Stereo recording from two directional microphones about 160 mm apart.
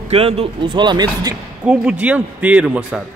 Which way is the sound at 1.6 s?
5° right (ahead or behind).